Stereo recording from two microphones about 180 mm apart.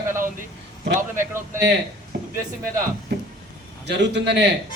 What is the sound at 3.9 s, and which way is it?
Speech, 70° right (ahead or behind).